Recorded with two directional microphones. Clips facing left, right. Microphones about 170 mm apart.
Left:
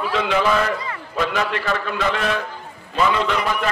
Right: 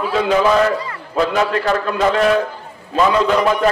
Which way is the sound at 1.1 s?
35° right (ahead or behind).